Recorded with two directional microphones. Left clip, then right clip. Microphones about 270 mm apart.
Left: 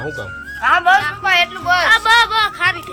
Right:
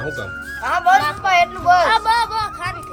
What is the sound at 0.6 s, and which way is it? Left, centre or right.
Speech, right.